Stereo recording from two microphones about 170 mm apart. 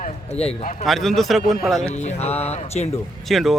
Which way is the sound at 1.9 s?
40° left (ahead or behind).